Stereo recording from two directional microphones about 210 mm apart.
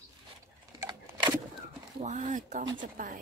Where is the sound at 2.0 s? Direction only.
35° right (ahead or behind).